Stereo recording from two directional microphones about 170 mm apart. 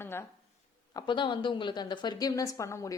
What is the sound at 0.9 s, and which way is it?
A woman's voice, 25° left (ahead or behind).